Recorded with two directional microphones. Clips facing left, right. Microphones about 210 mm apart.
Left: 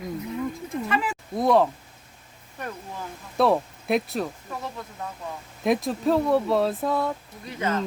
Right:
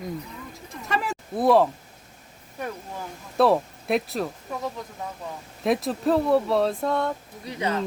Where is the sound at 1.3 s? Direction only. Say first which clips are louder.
Right 1 dB; 5° right (ahead or behind).